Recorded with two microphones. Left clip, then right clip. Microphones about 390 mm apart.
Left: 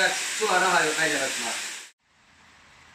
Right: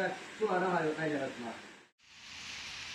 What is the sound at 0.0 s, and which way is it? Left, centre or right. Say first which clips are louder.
Speech: left 10 dB; left.